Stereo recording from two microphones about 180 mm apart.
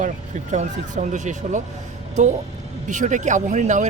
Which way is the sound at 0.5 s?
40° right (ahead or behind).